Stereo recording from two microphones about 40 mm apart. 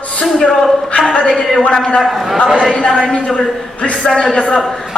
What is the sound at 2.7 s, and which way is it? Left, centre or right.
A man's voice, left.